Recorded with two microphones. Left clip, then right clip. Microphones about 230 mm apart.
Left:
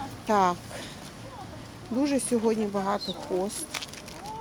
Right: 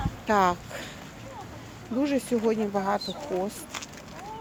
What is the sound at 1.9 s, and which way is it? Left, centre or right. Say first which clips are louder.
Speech: even; centre.